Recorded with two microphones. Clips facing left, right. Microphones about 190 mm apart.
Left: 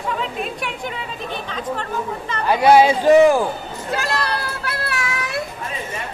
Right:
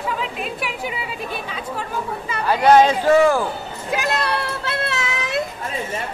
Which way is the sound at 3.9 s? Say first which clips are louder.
Right 1 dB; 20° right (ahead or behind).